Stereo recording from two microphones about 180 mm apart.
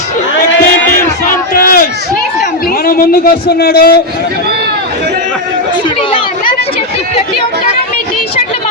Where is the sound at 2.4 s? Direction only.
60° left (ahead or behind).